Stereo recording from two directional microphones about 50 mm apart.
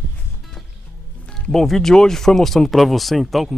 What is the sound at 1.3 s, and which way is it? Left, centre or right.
Speech, centre.